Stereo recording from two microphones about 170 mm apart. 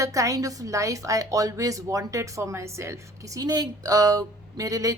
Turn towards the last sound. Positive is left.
turn(degrees=-20)  # may be behind; listen again after turning